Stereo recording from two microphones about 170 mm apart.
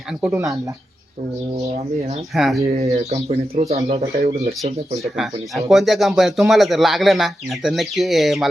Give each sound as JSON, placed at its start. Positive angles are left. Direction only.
{"t": 0.3, "sound": "speech", "side_deg": -15}
{"t": 2.3, "sound": "speech", "side_deg": 0}
{"t": 2.8, "sound": "speech", "side_deg": -40}
{"t": 5.1, "sound": "speech", "side_deg": 0}